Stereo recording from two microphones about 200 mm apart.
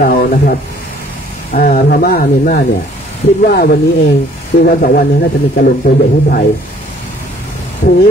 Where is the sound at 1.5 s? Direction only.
45° left (ahead or behind).